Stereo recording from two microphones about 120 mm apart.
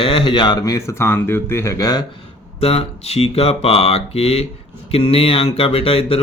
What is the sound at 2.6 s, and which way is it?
Speech, 60° left (ahead or behind).